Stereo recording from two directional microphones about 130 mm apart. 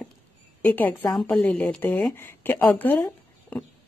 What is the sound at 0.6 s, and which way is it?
A woman's voice, 15° left (ahead or behind).